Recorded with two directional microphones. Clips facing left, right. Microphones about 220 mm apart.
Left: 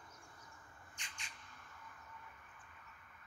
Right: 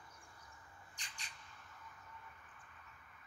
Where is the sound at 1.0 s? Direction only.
35° right (ahead or behind).